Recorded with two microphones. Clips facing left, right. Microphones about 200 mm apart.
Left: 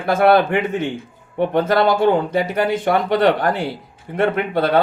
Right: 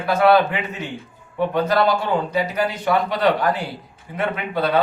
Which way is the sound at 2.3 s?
50° left (ahead or behind).